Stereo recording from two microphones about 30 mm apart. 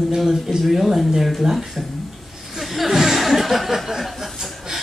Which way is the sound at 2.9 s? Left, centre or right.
Centre.